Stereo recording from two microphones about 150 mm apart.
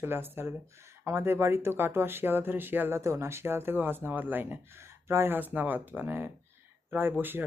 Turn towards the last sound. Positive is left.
turn(degrees=-15)  # may be behind; listen again after turning